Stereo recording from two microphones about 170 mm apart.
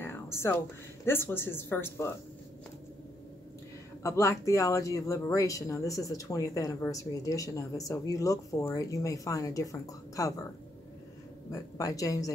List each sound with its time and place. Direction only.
0.0 s a sound: 15° left (ahead or behind)
1.0 s speech: 15° left (ahead or behind)
4.0 s speech: 20° left (ahead or behind)
11.5 s speech: 20° left (ahead or behind)